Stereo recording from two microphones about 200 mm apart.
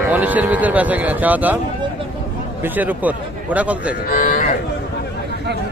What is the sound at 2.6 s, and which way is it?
Speech, 10° right (ahead or behind).